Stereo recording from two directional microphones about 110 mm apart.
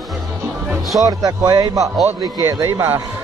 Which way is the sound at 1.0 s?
35° right (ahead or behind).